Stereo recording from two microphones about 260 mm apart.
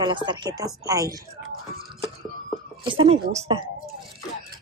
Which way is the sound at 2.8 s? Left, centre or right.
Centre.